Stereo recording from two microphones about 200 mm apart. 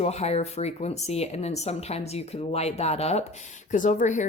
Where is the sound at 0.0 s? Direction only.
30° left (ahead or behind).